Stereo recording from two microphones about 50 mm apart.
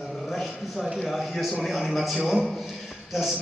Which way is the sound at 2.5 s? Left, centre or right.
Centre.